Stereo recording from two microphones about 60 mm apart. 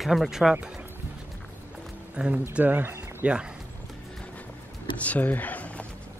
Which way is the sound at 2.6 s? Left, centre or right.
Right.